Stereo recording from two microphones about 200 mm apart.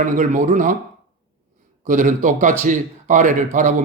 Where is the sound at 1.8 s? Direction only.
40° right (ahead or behind).